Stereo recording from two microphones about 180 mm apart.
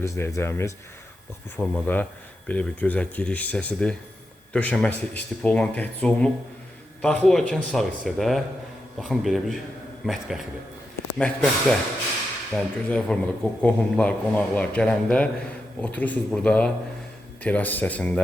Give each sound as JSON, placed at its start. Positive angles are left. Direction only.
{"t": 0.0, "sound": "a man's voice", "side_deg": 15}